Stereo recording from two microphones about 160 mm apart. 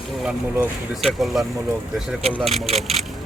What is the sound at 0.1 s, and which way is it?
Speech, 5° right (ahead or behind).